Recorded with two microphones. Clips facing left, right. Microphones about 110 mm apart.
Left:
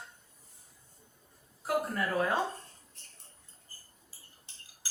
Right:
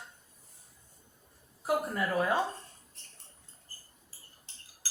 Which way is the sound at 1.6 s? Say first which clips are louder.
Right 1 dB; 15° right (ahead or behind).